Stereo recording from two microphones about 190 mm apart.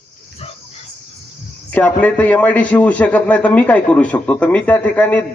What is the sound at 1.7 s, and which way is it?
A man's voice, 10° left (ahead or behind).